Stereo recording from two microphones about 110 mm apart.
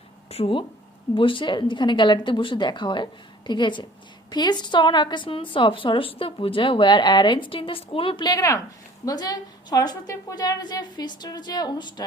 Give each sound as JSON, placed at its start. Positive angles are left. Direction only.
{"t": 0.3, "sound": "speech", "side_deg": 65}
{"t": 1.1, "sound": "a woman's voice", "side_deg": 50}
{"t": 8.3, "sound": "a woman's voice", "side_deg": 30}